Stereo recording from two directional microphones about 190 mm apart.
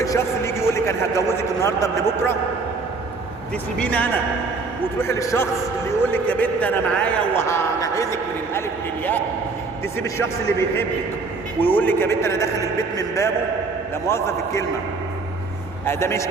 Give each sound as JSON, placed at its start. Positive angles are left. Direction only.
{"t": 0.0, "sound": "a sound", "side_deg": 15}
{"t": 3.8, "sound": "a man's voice", "side_deg": 5}
{"t": 10.0, "sound": "a man's voice", "side_deg": 15}
{"t": 15.9, "sound": "a man's voice", "side_deg": 15}